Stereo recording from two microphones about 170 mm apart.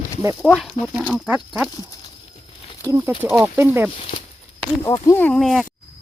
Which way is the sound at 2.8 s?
15° right (ahead or behind).